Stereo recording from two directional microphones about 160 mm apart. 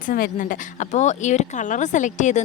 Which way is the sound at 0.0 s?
60° left (ahead or behind).